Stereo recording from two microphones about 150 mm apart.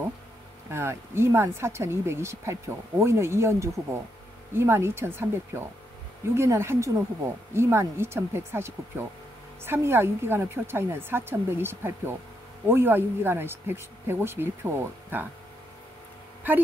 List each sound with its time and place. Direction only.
0.7 s speech: 15° right (ahead or behind)